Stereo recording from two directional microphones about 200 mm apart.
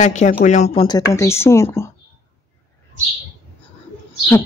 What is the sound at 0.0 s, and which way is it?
Speech, 35° left (ahead or behind).